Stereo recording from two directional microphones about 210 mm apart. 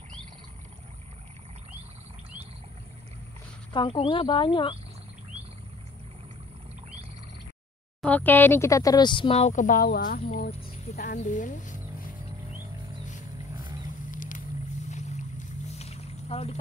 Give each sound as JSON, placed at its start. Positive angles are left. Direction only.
{"t": 3.7, "sound": "speech", "side_deg": 25}
{"t": 8.0, "sound": "speech", "side_deg": 10}
{"t": 14.1, "sound": "vehicle", "side_deg": 40}
{"t": 14.9, "sound": "boat", "side_deg": 35}